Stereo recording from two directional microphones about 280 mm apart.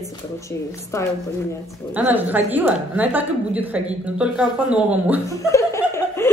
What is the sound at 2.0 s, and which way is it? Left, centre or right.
A woman's voice, centre.